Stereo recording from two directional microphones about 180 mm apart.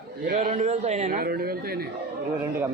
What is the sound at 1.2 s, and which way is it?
Speech, 55° right (ahead or behind).